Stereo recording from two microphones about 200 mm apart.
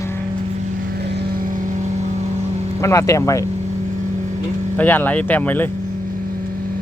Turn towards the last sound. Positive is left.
turn(degrees=10)  # may be behind; listen again after turning